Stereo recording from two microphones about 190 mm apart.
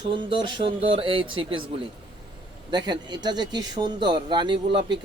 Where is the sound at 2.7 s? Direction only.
20° right (ahead or behind).